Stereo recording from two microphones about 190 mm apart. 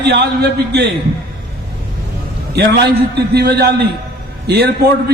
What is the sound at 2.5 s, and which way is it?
A man's voice, 60° right (ahead or behind).